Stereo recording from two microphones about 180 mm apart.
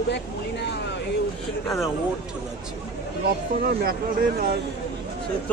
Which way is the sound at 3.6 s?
55° right (ahead or behind).